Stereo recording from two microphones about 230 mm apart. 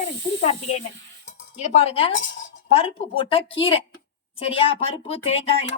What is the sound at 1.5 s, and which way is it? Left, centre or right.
A woman's voice, left.